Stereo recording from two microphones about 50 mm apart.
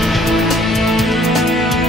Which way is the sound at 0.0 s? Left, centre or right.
Centre.